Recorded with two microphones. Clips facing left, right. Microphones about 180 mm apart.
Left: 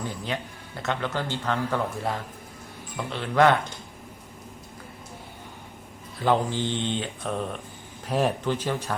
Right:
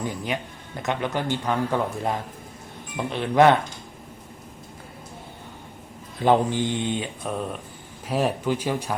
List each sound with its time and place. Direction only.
0.0 s speech: 15° right (ahead or behind)
6.2 s speech: 15° right (ahead or behind)